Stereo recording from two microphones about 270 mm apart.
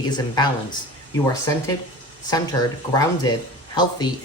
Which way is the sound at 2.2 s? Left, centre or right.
Centre.